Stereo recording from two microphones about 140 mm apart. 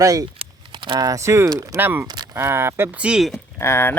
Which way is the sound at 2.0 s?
30° right (ahead or behind).